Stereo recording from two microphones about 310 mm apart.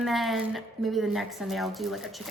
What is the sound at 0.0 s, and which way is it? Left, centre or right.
A woman's voice, centre.